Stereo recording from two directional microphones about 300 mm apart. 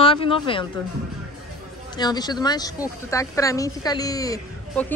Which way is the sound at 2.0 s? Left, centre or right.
Centre.